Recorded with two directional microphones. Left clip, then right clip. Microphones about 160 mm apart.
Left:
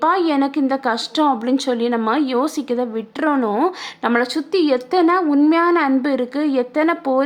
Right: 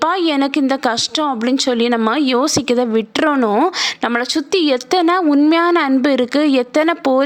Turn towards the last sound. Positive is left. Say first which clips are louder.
# right 3 dB
turn(degrees=-30)  # may be behind; listen again after turning